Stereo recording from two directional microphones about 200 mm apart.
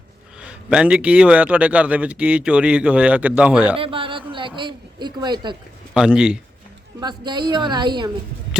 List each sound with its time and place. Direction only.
0.3 s a man's voice: 5° right (ahead or behind)
3.8 s a man's voice: 25° right (ahead or behind)
5.9 s speech: 5° right (ahead or behind)
7.0 s a woman's voice: 20° right (ahead or behind)